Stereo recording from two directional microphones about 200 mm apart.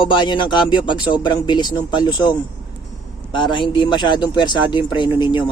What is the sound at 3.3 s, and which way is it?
Speech, 25° left (ahead or behind).